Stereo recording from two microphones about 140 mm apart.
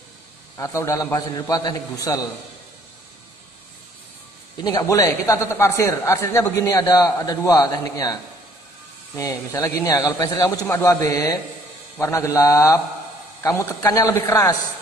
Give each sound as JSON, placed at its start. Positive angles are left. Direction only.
{"t": 0.6, "sound": "speech", "side_deg": 20}
{"t": 4.6, "sound": "speech", "side_deg": 25}